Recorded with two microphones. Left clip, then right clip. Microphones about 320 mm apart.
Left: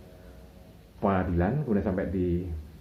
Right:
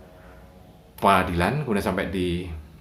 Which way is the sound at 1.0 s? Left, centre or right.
Right.